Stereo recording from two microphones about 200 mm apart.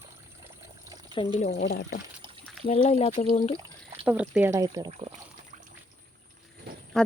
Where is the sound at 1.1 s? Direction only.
25° left (ahead or behind).